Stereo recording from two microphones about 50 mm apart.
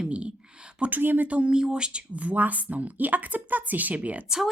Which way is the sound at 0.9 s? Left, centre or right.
Right.